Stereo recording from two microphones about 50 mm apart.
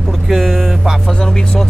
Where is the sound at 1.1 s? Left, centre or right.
Centre.